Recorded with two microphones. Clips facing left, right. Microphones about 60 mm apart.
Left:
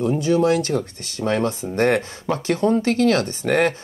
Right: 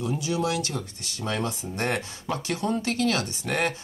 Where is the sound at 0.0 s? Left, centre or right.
Left.